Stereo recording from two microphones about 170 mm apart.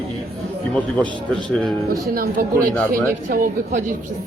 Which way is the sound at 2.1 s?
60° right (ahead or behind).